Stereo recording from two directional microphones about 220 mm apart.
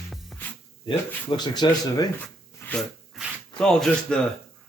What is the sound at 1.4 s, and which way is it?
Speech, 20° left (ahead or behind).